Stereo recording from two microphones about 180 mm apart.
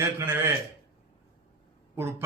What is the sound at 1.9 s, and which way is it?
Speech, 15° right (ahead or behind).